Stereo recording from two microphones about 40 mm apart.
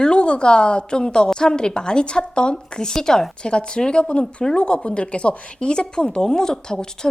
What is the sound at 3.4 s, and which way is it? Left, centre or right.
Speech, left.